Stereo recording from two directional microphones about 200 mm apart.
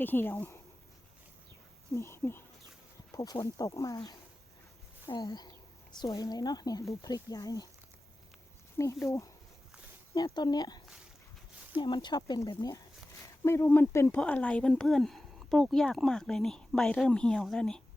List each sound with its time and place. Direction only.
0.0 s speech: 10° left (ahead or behind)
2.0 s speech: 15° left (ahead or behind)
8.8 s speech: 15° left (ahead or behind)